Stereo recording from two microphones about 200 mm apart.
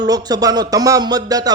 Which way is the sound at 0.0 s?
20° right (ahead or behind).